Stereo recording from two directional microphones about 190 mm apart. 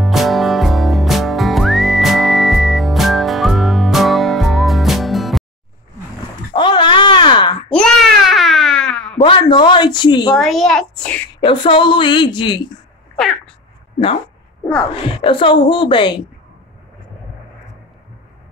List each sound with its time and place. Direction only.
0.0 s music: centre (ahead or behind)
6.5 s a sound: 25° left (ahead or behind)
7.7 s babbling: 5° left (ahead or behind)
9.2 s a sound: 25° left (ahead or behind)
10.3 s a child's voice: centre (ahead or behind)
11.3 s a woman's voice: 25° left (ahead or behind)
15.0 s a woman's voice: 25° left (ahead or behind)